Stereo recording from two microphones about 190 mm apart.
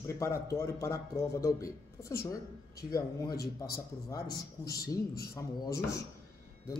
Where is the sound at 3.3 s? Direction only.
55° left (ahead or behind).